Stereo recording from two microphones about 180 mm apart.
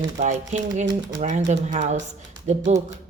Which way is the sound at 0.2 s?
40° right (ahead or behind).